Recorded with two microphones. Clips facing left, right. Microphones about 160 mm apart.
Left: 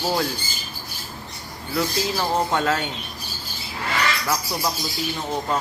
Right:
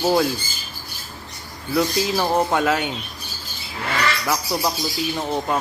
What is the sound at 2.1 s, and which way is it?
Speech, 10° right (ahead or behind).